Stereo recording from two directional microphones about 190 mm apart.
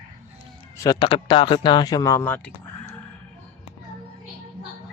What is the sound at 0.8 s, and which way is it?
Speech, 20° left (ahead or behind).